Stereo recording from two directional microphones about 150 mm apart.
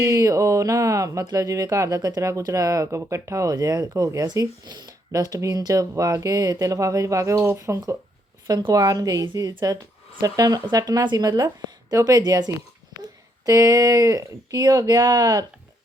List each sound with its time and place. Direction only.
0.0 s speech: 20° right (ahead or behind)
12.9 s a sound: 25° right (ahead or behind)
13.4 s speech: 25° right (ahead or behind)